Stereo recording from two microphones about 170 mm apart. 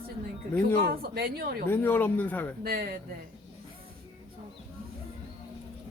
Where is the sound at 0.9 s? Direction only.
60° right (ahead or behind).